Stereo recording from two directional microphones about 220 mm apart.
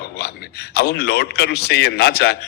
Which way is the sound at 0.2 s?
45° left (ahead or behind).